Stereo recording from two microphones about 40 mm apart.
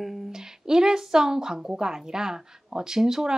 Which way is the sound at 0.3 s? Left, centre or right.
Centre.